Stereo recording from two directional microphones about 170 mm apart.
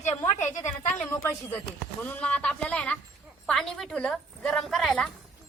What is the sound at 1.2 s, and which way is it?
A woman's voice, 15° left (ahead or behind).